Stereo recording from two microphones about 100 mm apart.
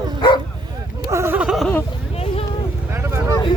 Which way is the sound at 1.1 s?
25° right (ahead or behind).